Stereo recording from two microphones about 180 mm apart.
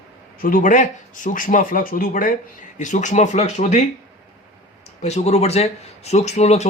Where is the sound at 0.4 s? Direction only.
45° left (ahead or behind).